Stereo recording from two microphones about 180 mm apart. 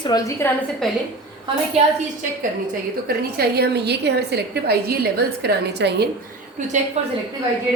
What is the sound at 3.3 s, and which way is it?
A woman's voice, 65° right (ahead or behind).